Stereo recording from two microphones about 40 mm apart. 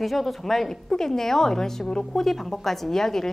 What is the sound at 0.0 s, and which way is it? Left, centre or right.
A woman's voice, centre.